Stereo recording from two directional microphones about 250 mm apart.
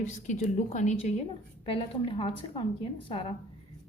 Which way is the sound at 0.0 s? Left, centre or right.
Left.